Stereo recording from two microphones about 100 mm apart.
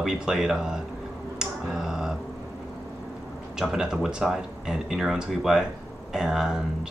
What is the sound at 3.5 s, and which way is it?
Speech, 5° right (ahead or behind).